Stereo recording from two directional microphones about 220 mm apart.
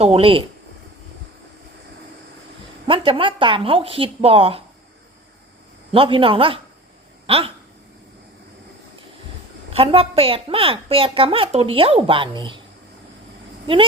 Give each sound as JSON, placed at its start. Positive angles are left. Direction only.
{"t": 0.0, "sound": "a woman's voice", "side_deg": -25}
{"t": 2.8, "sound": "a woman's voice", "side_deg": -25}
{"t": 5.9, "sound": "a woman's voice", "side_deg": -25}
{"t": 7.3, "sound": "a sound", "side_deg": -25}
{"t": 9.7, "sound": "a woman's voice", "side_deg": -25}